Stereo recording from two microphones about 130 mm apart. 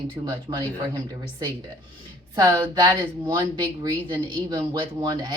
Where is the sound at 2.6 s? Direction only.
30° right (ahead or behind).